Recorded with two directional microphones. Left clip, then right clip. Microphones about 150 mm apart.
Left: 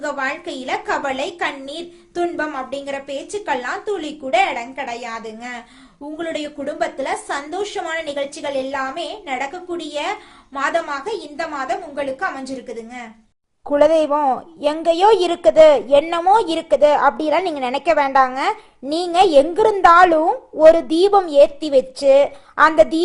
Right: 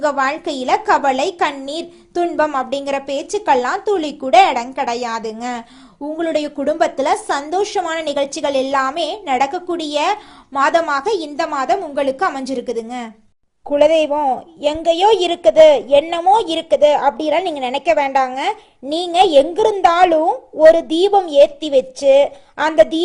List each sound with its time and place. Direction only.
0.0 s a woman's voice: 35° right (ahead or behind)
6.1 s speech: 25° right (ahead or behind)
6.7 s a woman's voice: 45° right (ahead or behind)
13.7 s a woman's voice: centre (ahead or behind)